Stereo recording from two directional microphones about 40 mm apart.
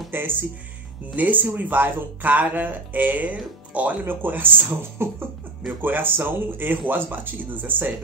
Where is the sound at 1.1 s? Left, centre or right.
Right.